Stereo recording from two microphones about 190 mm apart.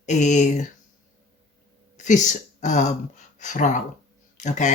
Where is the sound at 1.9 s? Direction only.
40° left (ahead or behind).